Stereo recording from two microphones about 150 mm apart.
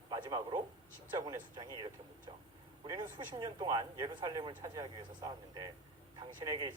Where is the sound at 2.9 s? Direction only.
25° right (ahead or behind).